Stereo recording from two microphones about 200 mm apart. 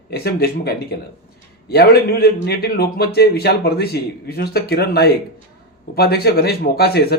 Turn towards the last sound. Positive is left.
turn(degrees=50)  # may be behind; listen again after turning